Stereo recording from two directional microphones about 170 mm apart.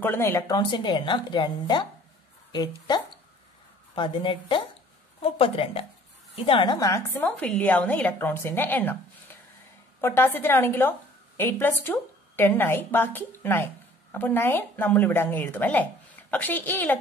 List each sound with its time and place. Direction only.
0.0 s a woman's voice: 15° left (ahead or behind)